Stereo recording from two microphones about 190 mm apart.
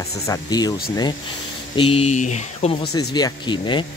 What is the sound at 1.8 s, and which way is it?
Speech, 30° left (ahead or behind).